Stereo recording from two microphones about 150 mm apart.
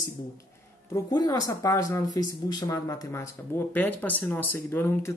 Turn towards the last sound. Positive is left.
turn(degrees=15)  # may be behind; listen again after turning